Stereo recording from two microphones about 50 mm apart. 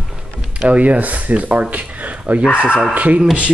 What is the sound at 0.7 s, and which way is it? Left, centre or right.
Speech, right.